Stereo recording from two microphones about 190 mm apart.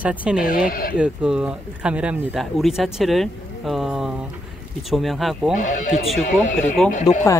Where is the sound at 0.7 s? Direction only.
50° left (ahead or behind).